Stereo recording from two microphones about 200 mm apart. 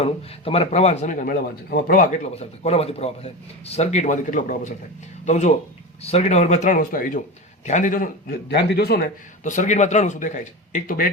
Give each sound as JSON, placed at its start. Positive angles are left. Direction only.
{"t": 0.0, "sound": "speech", "side_deg": 30}
{"t": 9.4, "sound": "speech", "side_deg": 40}